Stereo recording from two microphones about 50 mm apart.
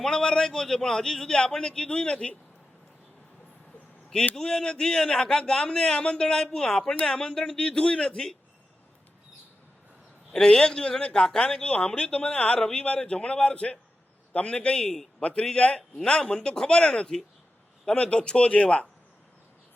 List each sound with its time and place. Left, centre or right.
0.0 s a man's voice: centre
4.4 s a man's voice: centre
10.3 s speech: centre
14.8 s a man's voice: centre